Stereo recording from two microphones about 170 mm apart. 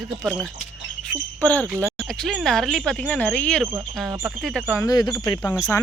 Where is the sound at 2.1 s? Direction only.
Centre (ahead or behind).